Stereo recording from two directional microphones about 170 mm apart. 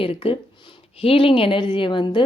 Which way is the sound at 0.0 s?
35° left (ahead or behind).